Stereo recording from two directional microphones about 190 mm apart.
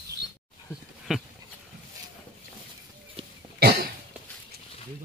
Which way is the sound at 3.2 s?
30° right (ahead or behind).